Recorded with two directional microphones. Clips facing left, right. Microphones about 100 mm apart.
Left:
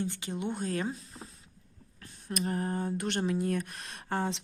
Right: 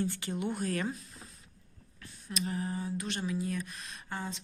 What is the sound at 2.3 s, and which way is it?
A woman's voice, 50° left (ahead or behind).